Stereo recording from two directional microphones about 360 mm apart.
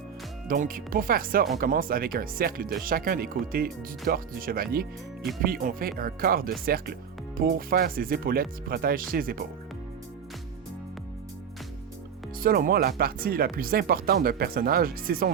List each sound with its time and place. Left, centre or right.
0.4 s speech: right
12.4 s speech: right